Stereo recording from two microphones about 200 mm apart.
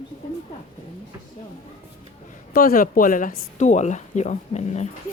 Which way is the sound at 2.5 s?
45° left (ahead or behind).